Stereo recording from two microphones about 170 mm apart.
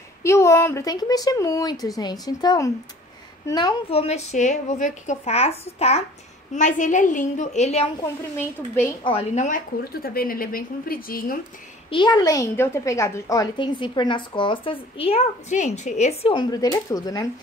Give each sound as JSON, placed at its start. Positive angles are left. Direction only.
{"t": 0.2, "sound": "a woman's voice", "side_deg": 15}
{"t": 8.4, "sound": "speech", "side_deg": 15}
{"t": 9.3, "sound": "a woman's voice", "side_deg": 45}
{"t": 9.9, "sound": "a woman's voice", "side_deg": 60}
{"t": 11.9, "sound": "a woman's voice", "side_deg": 25}